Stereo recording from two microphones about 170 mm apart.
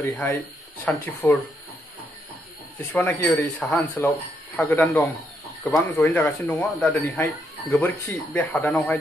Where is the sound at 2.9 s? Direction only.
15° left (ahead or behind).